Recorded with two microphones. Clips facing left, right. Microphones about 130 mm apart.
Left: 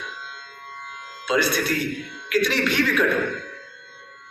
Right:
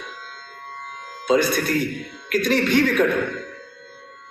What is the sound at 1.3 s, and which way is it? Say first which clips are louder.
A man's voice: right 3 dB; 50° right (ahead or behind).